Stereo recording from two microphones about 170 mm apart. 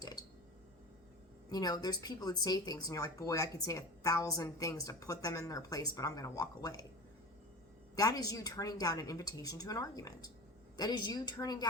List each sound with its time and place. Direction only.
0.0 s a sound: 25° left (ahead or behind)
1.5 s speech: 25° left (ahead or behind)
7.9 s speech: 20° left (ahead or behind)